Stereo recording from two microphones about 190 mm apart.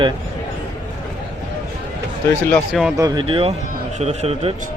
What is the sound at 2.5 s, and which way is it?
Speech, centre (ahead or behind).